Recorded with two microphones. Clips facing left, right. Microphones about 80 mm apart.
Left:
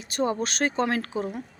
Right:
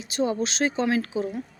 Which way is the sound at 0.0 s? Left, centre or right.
Left.